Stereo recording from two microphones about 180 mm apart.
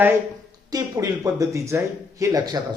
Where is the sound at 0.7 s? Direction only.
20° right (ahead or behind).